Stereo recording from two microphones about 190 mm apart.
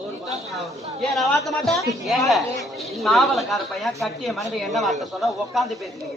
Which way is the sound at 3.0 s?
Centre (ahead or behind).